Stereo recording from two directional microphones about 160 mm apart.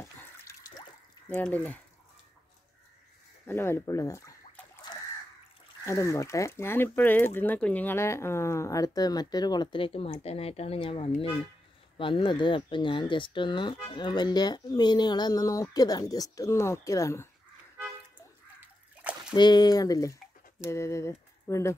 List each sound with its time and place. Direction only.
0.0 s water: 20° left (ahead or behind)
1.3 s speech: 10° left (ahead or behind)
3.4 s speech: 15° left (ahead or behind)
5.9 s speech: 20° left (ahead or behind)
19.3 s speech: 25° left (ahead or behind)